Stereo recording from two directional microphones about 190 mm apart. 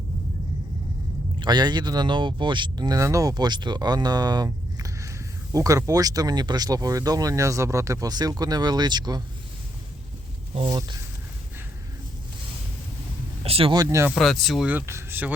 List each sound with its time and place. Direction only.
1.4 s speech: 20° right (ahead or behind)
10.7 s speech: 20° right (ahead or behind)
13.4 s speech: 30° right (ahead or behind)
14.2 s speech: centre (ahead or behind)